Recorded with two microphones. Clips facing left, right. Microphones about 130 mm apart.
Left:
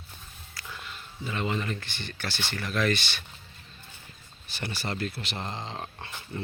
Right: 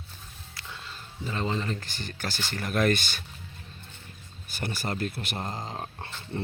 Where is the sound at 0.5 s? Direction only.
25° right (ahead or behind); by 3.2 s 45° right (ahead or behind).